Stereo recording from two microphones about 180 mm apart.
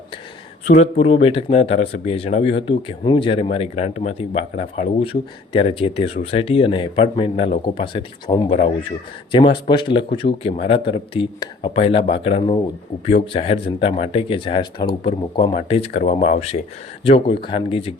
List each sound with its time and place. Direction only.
0.7 s a man's voice: 35° left (ahead or behind)